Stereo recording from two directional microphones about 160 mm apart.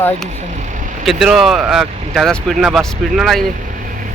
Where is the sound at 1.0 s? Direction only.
Centre (ahead or behind).